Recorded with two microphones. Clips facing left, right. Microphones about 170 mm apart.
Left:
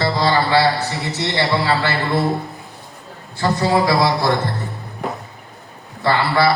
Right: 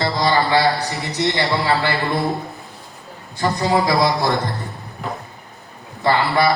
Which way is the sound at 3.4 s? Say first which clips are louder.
Left 1 dB; 15° right (ahead or behind).